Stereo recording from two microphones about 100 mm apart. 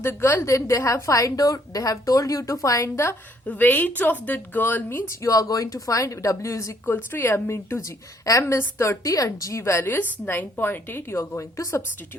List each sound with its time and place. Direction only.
0.0 s a woman's voice: 25° left (ahead or behind)
3.4 s a woman's voice: 15° left (ahead or behind); by 11.8 s 30° left (ahead or behind)